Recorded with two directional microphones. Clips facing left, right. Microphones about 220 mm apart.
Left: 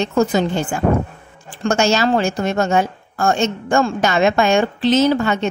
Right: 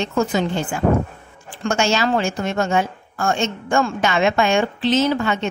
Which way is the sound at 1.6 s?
40° left (ahead or behind).